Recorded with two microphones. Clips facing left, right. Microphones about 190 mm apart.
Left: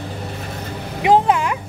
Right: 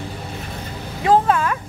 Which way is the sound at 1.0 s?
15° left (ahead or behind).